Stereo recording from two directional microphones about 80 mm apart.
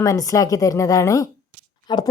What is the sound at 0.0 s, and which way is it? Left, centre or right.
A woman's voice, left.